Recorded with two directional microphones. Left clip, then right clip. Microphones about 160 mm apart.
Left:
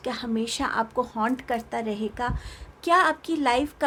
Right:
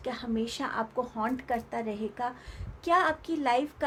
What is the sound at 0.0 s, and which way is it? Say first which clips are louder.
A woman's voice: left 4 dB; 45° left (ahead or behind).